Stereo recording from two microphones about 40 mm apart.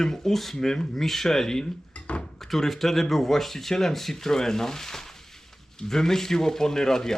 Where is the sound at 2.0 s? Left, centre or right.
Left.